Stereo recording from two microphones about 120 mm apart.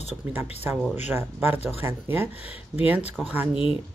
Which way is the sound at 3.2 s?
5° left (ahead or behind).